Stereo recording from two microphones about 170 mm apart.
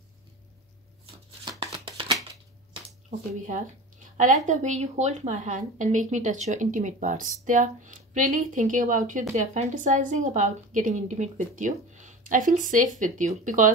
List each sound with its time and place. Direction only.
1.6 s shuffling cards: 30° right (ahead or behind)
3.4 s a woman's voice: 50° right (ahead or behind)